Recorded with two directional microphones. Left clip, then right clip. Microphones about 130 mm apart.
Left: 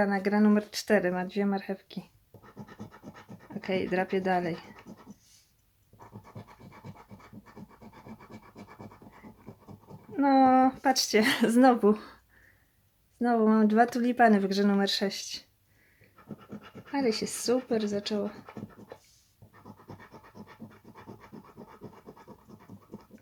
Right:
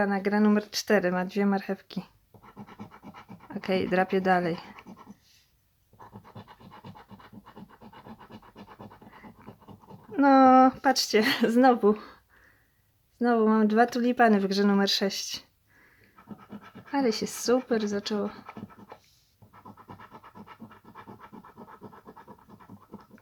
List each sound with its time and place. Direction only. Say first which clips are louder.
0.0 s speech: right 1 dB; 10° right (ahead or behind); by 2.0 s 35° right (ahead or behind)
2.6 s scratch: right 1 dB; 5° left (ahead or behind)
3.5 s speech: right 3 dB; 35° right (ahead or behind)
10.1 s a woman's voice: right 4 dB; 35° right (ahead or behind)
10.9 s speech: right 1 dB; 15° right (ahead or behind)
13.1 s speech: right 2 dB; 15° right (ahead or behind)
16.9 s a woman's voice: right 2 dB; 35° right (ahead or behind)